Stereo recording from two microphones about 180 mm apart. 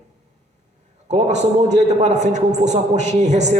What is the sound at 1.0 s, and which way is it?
A man's voice, 40° right (ahead or behind).